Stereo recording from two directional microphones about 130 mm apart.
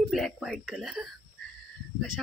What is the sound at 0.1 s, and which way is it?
Speech, centre (ahead or behind).